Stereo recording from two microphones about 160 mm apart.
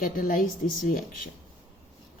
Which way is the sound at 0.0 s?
60° left (ahead or behind).